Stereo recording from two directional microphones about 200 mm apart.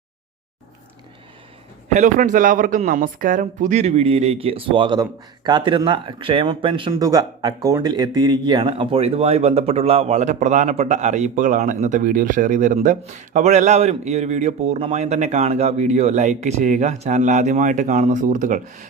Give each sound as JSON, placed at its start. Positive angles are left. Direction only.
{"t": 1.9, "sound": "speech", "side_deg": -40}